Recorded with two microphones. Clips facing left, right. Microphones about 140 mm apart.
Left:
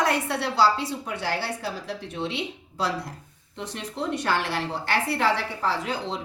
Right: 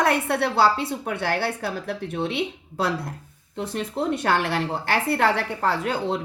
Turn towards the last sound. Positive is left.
turn(degrees=-55)  # may be behind; listen again after turning